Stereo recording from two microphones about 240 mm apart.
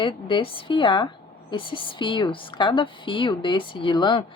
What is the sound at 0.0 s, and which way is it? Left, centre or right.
A woman's voice, left.